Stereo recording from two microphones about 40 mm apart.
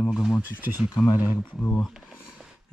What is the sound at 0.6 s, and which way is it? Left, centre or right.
Speech, right.